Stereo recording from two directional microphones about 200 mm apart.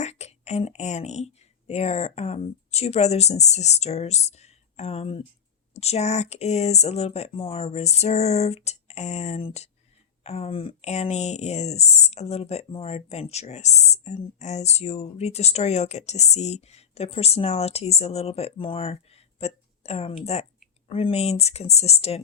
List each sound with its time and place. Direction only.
0.0 s speech: 35° left (ahead or behind)